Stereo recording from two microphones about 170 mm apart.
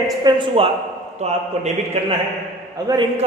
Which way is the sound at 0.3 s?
30° right (ahead or behind).